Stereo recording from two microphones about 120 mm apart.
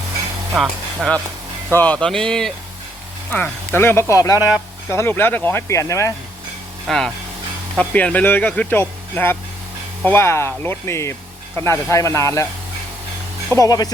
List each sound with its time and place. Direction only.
0.5 s speech: 5° right (ahead or behind)
1.7 s speech: 15° left (ahead or behind)
3.3 s speech: 15° left (ahead or behind)
6.8 s speech: 5° left (ahead or behind); by 12.5 s 25° left (ahead or behind)
13.5 s speech: 30° left (ahead or behind)